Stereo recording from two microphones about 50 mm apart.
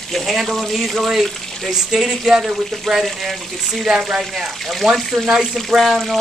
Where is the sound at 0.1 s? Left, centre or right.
Centre.